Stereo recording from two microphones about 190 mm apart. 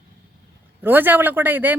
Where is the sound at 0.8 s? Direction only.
10° right (ahead or behind).